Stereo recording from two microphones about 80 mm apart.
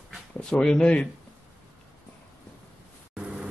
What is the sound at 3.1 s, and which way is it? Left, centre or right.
Vehicle, centre.